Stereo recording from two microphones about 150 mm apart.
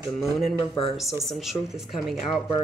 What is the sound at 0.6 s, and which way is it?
Speech, 35° left (ahead or behind).